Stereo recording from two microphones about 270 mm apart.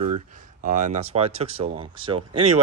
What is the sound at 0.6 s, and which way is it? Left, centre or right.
Speech, right.